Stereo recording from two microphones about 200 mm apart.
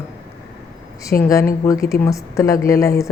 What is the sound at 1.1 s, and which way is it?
A woman's voice, 10° left (ahead or behind).